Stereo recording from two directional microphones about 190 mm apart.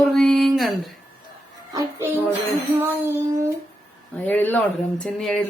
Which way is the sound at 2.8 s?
15° right (ahead or behind).